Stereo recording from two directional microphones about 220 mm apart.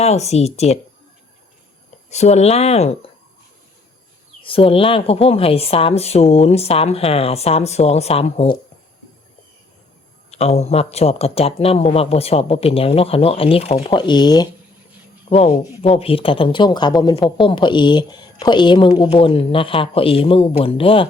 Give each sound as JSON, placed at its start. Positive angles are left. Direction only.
{"t": 0.0, "sound": "a man's voice", "side_deg": 30}
{"t": 2.0, "sound": "a man's voice", "side_deg": 30}
{"t": 4.4, "sound": "a man's voice", "side_deg": 25}
{"t": 10.3, "sound": "a man's voice", "side_deg": 30}